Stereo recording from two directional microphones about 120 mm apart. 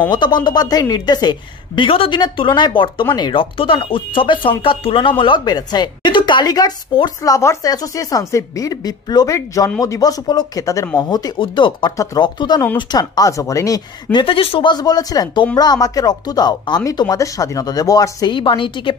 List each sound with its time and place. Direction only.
0.1 s speech: 40° left (ahead or behind)
14.1 s speech: 50° left (ahead or behind)